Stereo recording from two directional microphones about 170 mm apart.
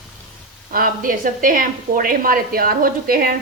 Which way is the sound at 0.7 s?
55° right (ahead or behind).